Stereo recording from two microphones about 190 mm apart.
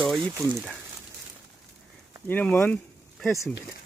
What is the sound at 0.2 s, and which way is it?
Speech, 20° right (ahead or behind).